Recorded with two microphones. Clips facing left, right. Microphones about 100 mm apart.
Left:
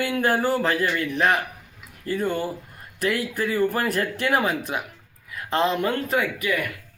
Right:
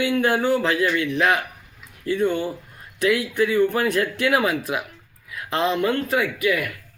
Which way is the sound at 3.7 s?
Centre (ahead or behind).